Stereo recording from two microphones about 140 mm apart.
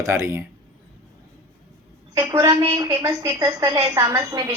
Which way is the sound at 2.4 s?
25° right (ahead or behind).